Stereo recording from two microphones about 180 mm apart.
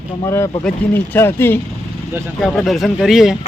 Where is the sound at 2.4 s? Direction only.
Centre (ahead or behind).